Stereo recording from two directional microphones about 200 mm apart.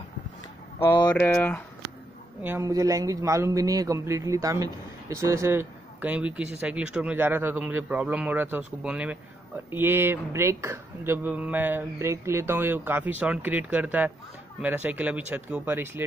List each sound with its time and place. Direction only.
0.7 s speech: 10° left (ahead or behind)
2.4 s speech: 15° right (ahead or behind)